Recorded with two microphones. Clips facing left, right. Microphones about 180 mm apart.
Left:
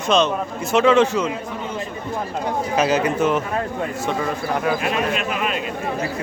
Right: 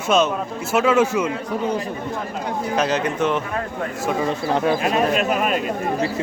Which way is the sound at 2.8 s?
10° left (ahead or behind).